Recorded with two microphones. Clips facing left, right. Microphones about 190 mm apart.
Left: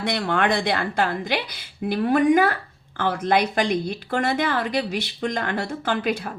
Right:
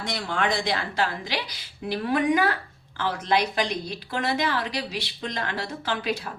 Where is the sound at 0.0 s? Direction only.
60° left (ahead or behind).